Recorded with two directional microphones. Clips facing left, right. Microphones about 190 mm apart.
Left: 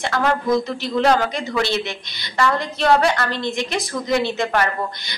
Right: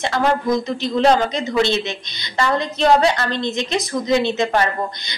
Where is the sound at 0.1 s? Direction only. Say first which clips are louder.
Even; 20° right (ahead or behind).